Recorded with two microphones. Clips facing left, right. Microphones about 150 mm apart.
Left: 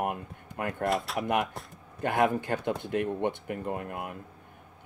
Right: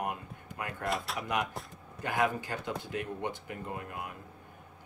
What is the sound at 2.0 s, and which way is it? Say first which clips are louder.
Speech: left 5 dB; 55° left (ahead or behind).